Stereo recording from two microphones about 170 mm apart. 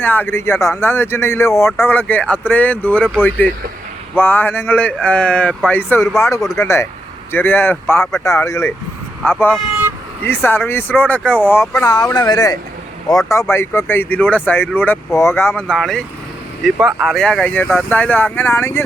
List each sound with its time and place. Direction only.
0.0 s speech: 10° left (ahead or behind)
11.9 s speech: 25° left (ahead or behind)